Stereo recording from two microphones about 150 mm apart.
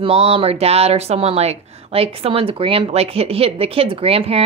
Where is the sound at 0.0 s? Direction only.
40° right (ahead or behind).